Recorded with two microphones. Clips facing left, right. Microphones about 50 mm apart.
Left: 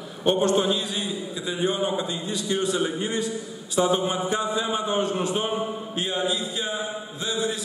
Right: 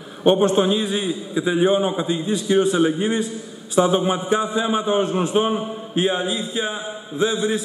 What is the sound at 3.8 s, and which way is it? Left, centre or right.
A man's voice, right.